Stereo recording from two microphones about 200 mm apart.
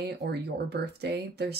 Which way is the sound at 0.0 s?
55° right (ahead or behind).